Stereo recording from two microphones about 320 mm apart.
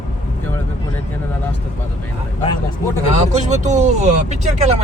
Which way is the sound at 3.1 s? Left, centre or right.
Right.